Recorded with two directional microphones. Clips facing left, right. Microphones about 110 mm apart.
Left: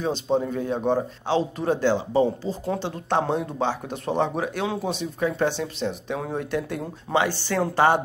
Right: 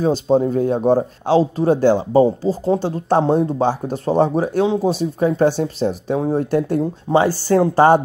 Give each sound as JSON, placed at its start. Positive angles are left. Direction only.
{"t": 0.0, "sound": "speech", "side_deg": -40}